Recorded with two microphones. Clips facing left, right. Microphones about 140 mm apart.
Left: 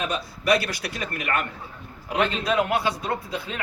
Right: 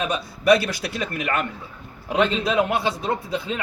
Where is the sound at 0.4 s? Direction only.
25° right (ahead or behind).